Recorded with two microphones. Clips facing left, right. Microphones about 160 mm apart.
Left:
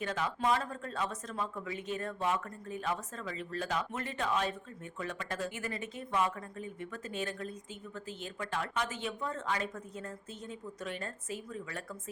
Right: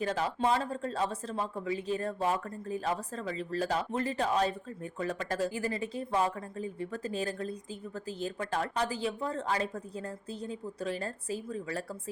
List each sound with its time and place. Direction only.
0.0 s speech: 35° right (ahead or behind)